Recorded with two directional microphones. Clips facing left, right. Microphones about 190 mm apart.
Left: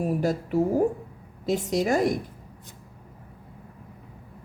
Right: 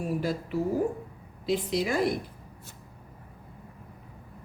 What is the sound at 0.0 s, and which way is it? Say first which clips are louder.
A woman's voice: left 4 dB; 45° left (ahead or behind).